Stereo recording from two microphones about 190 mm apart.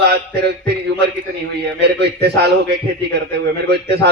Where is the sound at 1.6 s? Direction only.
60° right (ahead or behind).